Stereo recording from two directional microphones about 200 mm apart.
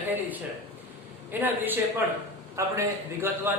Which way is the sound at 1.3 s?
10° right (ahead or behind).